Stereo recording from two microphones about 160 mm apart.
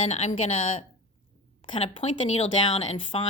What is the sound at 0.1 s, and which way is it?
Speech, 45° left (ahead or behind).